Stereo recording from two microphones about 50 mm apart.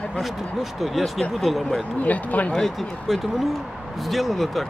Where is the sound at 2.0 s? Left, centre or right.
Left.